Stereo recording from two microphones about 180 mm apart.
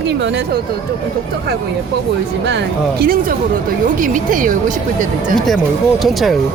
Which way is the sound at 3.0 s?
55° right (ahead or behind).